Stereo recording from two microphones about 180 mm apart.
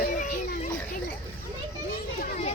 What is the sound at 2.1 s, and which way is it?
Children playing, 40° left (ahead or behind).